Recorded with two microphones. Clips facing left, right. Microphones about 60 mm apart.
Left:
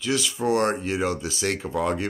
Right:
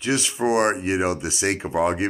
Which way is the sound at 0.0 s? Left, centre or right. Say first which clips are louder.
Right 2 dB; right.